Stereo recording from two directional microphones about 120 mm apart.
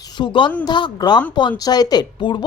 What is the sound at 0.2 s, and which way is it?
A woman's voice, 40° left (ahead or behind).